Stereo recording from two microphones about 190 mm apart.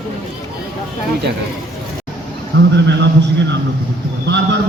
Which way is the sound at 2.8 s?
65° right (ahead or behind).